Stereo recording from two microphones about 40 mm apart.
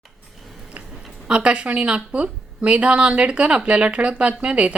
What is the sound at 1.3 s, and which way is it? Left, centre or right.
A woman's voice, right.